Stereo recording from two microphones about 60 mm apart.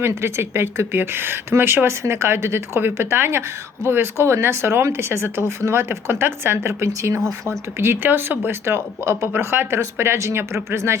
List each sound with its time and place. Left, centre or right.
0.0 s speech: right
7.8 s speech: right